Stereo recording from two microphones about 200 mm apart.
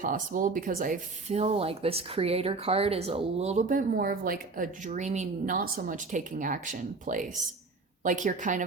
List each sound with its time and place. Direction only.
0.0 s speech: 40° right (ahead or behind)